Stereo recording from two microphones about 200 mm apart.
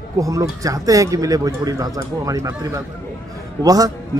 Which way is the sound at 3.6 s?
20° right (ahead or behind).